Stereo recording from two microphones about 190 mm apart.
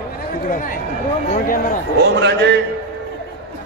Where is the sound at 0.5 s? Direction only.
45° left (ahead or behind).